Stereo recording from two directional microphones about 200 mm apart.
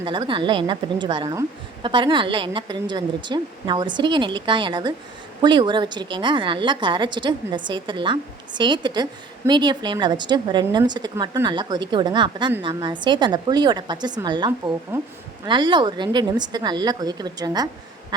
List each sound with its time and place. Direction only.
0.0 s a woman's voice: 25° right (ahead or behind)
14.9 s a woman's voice: 10° right (ahead or behind)
15.4 s a woman's voice: 25° right (ahead or behind)